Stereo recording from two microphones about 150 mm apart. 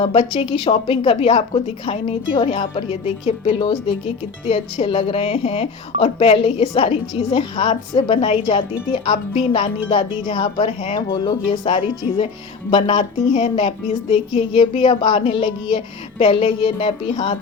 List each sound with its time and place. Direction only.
0.0 s a woman's voice: 35° left (ahead or behind)